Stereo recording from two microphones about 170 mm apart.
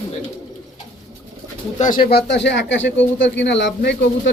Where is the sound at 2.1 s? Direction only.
80° left.